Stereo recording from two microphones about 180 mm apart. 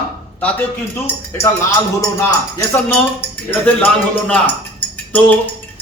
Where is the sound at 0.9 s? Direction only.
15° left (ahead or behind).